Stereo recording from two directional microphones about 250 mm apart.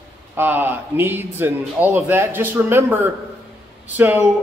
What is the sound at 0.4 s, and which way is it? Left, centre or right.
Speech, centre.